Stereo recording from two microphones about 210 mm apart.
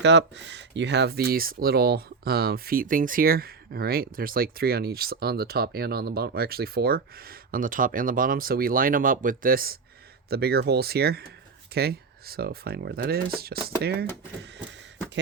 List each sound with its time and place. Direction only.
0.0 s speech: 55° right (ahead or behind)